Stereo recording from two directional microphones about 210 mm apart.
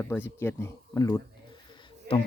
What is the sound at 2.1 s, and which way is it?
Speech, 45° right (ahead or behind).